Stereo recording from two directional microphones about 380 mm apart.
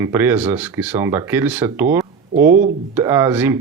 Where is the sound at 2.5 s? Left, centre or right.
Centre.